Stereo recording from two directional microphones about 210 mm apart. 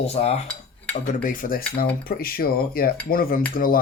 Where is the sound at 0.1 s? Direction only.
30° left (ahead or behind).